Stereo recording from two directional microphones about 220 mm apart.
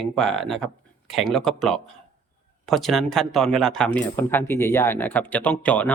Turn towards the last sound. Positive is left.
turn(degrees=5)  # may be behind; listen again after turning